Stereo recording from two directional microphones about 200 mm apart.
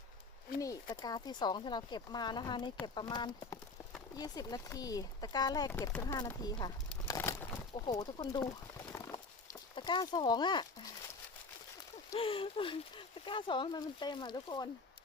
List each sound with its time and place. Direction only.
0.6 s speech: 15° left (ahead or behind)
6.1 s a sound: 20° left (ahead or behind)
7.8 s speech: 20° left (ahead or behind)
8.9 s horse: 15° left (ahead or behind)
12.1 s speech: 25° left (ahead or behind)